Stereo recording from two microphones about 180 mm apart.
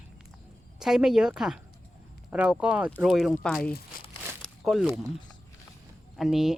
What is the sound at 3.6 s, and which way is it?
Speech, 55° left (ahead or behind).